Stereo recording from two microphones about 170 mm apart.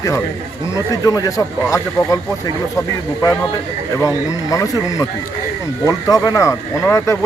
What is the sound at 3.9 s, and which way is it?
Speech, 20° left (ahead or behind).